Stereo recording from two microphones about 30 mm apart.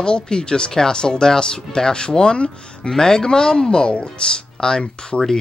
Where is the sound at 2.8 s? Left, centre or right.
Centre.